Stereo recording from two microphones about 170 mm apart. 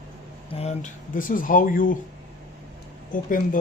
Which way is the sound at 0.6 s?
45° left (ahead or behind).